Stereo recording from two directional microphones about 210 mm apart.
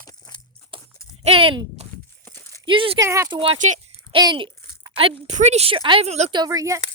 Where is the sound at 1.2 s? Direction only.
25° right (ahead or behind).